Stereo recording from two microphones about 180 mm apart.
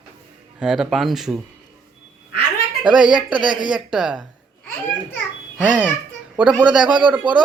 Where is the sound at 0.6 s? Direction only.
5° right (ahead or behind).